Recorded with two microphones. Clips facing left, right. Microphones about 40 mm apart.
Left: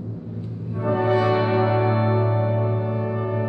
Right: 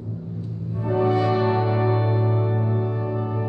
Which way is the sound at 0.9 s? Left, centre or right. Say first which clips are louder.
Left 1 dB; centre.